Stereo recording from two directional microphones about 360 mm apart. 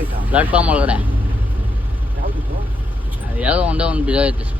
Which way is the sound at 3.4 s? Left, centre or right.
Centre.